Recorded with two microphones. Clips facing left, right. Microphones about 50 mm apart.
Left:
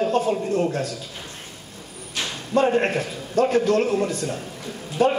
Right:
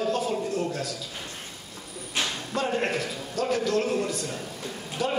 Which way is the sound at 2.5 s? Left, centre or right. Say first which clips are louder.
Left 8 dB; left.